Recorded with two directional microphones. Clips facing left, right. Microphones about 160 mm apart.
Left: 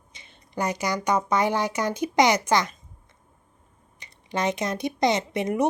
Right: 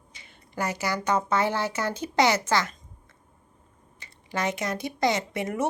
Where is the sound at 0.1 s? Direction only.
20° left (ahead or behind).